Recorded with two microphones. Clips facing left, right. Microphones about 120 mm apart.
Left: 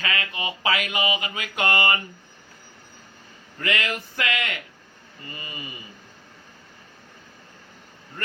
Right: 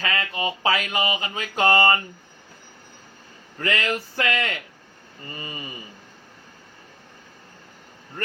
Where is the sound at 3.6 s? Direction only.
35° right (ahead or behind).